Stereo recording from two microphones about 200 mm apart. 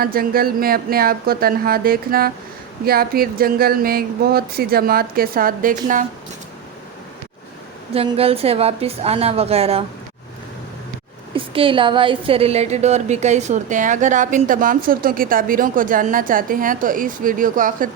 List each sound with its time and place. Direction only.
0.0 s speech: 45° right (ahead or behind)
7.9 s a woman's voice: 30° right (ahead or behind)
11.3 s a woman's voice: 25° right (ahead or behind); by 17.8 s 45° right (ahead or behind)